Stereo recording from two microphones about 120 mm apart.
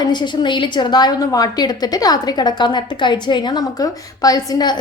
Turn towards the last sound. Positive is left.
turn(degrees=35)  # may be behind; listen again after turning